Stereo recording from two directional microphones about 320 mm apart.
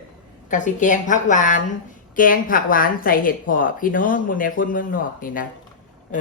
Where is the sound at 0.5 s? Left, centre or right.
Left.